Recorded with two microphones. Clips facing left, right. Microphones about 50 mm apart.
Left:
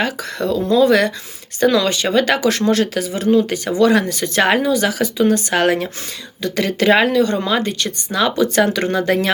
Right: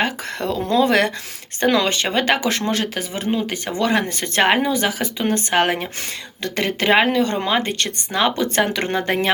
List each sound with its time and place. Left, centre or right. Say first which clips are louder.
0.0 s speech: left 2 dB; right
4.4 s speech: left 2 dB; right
7.6 s speech: left 2 dB; right
8.1 s speech: left 3 dB; right